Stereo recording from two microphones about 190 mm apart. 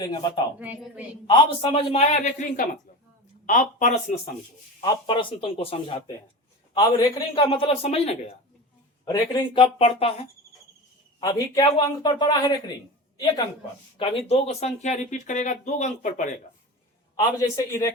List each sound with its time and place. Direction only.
0.0 s a man's voice: 20° left (ahead or behind)
0.6 s a woman's voice: 10° right (ahead or behind)
1.3 s speech: 25° left (ahead or behind); by 3.9 s 40° left (ahead or behind)
4.8 s a man's voice: 25° left (ahead or behind)
9.0 s a man's voice: 20° left (ahead or behind)
11.2 s a man's voice: 20° left (ahead or behind); by 16.3 s 40° left (ahead or behind)
17.4 s a man's voice: 15° left (ahead or behind)